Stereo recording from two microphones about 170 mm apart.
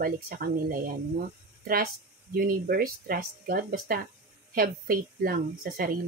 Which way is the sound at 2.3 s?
60° right (ahead or behind).